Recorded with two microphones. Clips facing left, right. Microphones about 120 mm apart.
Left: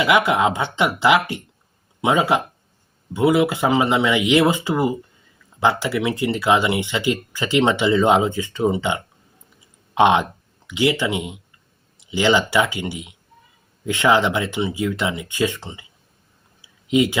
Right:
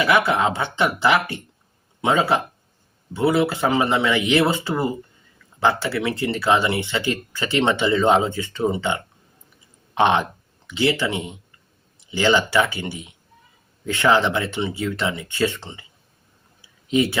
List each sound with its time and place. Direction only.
0.0 s speech: 15° left (ahead or behind)
16.9 s speech: 15° left (ahead or behind)